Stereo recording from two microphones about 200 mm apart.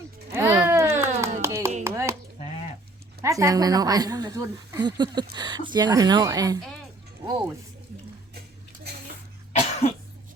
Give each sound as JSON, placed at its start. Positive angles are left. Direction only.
{"t": 0.3, "sound": "music", "side_deg": -15}
{"t": 1.2, "sound": "a sound", "side_deg": -15}
{"t": 1.8, "sound": "chopping", "side_deg": -15}
{"t": 3.2, "sound": "speech", "side_deg": -15}
{"t": 9.5, "sound": "cough", "side_deg": 30}